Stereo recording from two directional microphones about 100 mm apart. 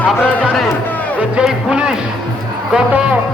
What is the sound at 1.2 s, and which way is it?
Speech, 10° right (ahead or behind).